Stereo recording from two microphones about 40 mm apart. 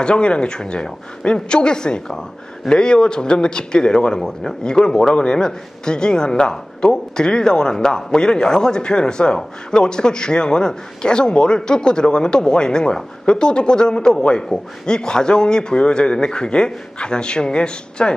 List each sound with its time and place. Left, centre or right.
0.0 s speech: left